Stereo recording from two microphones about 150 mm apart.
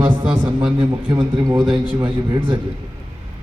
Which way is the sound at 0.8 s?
30° right (ahead or behind).